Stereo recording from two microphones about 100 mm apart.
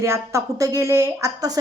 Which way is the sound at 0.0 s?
30° right (ahead or behind).